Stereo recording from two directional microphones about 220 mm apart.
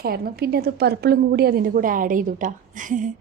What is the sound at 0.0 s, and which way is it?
A woman's voice, 45° right (ahead or behind).